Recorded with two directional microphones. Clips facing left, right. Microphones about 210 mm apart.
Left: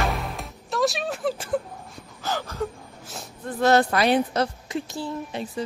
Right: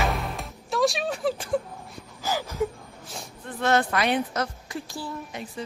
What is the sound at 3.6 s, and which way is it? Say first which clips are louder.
A woman's voice: left 4 dB; 35° left (ahead or behind).